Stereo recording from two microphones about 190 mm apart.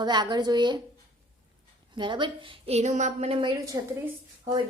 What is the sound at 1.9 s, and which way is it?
A woman's voice, 25° right (ahead or behind).